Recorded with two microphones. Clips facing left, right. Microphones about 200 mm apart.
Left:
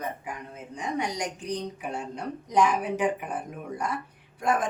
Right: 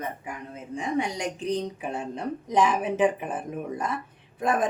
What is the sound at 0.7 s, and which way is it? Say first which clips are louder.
Speech: right 3 dB; 25° right (ahead or behind).